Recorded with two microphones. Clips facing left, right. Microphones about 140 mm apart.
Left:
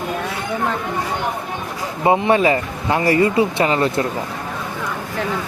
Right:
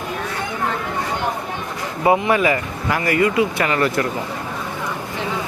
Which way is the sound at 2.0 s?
30° left (ahead or behind).